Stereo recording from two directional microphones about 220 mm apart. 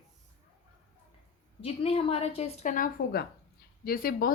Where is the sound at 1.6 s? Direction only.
25° left (ahead or behind).